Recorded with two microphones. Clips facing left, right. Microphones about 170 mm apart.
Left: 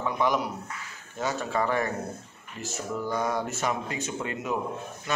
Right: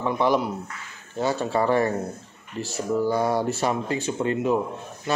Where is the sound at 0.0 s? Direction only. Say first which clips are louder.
Right 4 dB; 30° right (ahead or behind).